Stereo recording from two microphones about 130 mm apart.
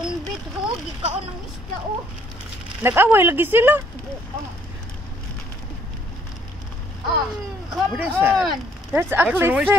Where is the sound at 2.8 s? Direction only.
15° right (ahead or behind).